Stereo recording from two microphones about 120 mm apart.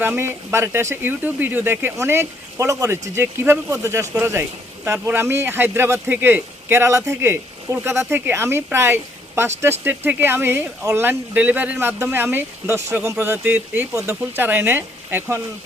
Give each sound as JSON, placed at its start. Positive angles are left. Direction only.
{"t": 0.2, "sound": "speech", "side_deg": -20}